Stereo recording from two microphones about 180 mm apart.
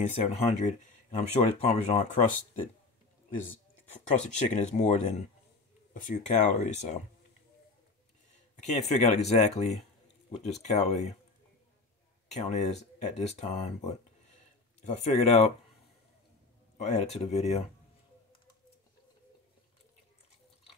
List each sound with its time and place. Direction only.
0.0 s speech: 40° left (ahead or behind)
4.2 s speech: 40° left (ahead or behind)
8.6 s speech: 40° left (ahead or behind)
12.4 s speech: 40° left (ahead or behind)
16.7 s speech: 40° left (ahead or behind)